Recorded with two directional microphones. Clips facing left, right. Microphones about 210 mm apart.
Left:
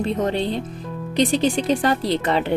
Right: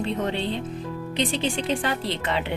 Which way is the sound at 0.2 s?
40° left (ahead or behind).